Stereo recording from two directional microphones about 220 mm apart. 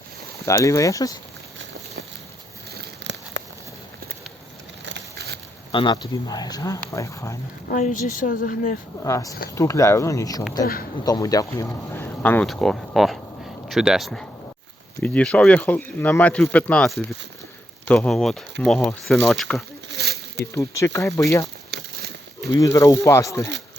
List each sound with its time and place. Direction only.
0.4 s speech: 15° left (ahead or behind)
2.7 s a sound: 50° right (ahead or behind)
4.9 s a sound: 50° right (ahead or behind)
5.7 s speech: 20° left (ahead or behind)
7.7 s speech: 35° left (ahead or behind)
9.0 s speech: 15° left (ahead or behind)
19.9 s a sound: 50° right (ahead or behind)
20.4 s speech: 15° left (ahead or behind)
22.5 s speech: 15° left (ahead or behind)